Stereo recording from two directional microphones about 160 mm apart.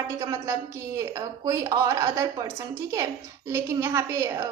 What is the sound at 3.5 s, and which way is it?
A woman's voice, 15° right (ahead or behind).